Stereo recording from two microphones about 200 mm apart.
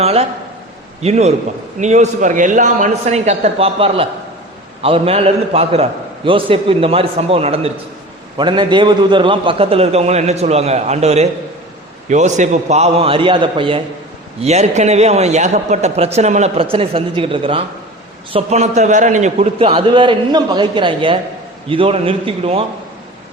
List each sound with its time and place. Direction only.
0.0 s a man's voice: 30° right (ahead or behind)